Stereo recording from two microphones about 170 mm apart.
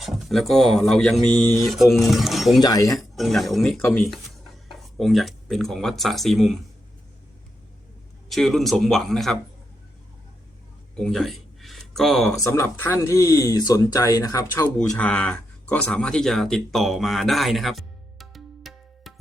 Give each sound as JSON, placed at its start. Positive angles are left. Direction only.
{"t": 0.0, "sound": "speech", "side_deg": 0}
{"t": 2.6, "sound": "speech", "side_deg": 20}
{"t": 3.0, "sound": "speech", "side_deg": 0}
{"t": 8.3, "sound": "speech", "side_deg": 0}
{"t": 10.9, "sound": "a sound", "side_deg": 5}
{"t": 12.4, "sound": "speech", "side_deg": 15}
{"t": 14.8, "sound": "speech", "side_deg": 5}